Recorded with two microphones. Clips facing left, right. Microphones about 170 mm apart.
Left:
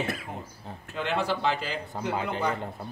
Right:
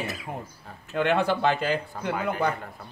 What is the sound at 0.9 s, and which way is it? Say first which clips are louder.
Speech: right 5 dB; 55° right (ahead or behind).